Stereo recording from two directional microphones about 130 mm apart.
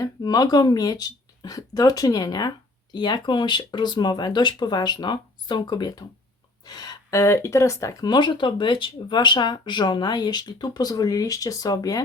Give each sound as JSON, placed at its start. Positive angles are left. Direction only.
{"t": 0.0, "sound": "speech", "side_deg": 30}